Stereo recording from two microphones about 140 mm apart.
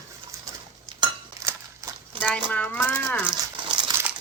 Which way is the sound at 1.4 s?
20° right (ahead or behind).